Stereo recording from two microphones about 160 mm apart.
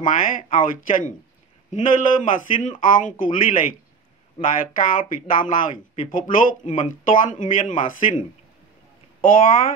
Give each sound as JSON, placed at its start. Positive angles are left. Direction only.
{"t": 0.0, "sound": "speech", "side_deg": 55}